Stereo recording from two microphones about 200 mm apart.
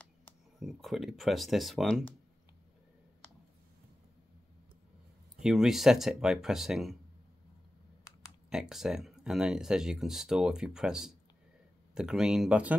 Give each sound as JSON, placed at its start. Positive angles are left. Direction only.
{"t": 0.6, "sound": "speech", "side_deg": 0}
{"t": 5.4, "sound": "speech", "side_deg": -5}
{"t": 8.5, "sound": "speech", "side_deg": -5}